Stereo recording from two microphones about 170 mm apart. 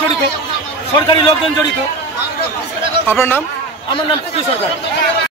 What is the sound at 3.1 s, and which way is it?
Speech, 15° left (ahead or behind).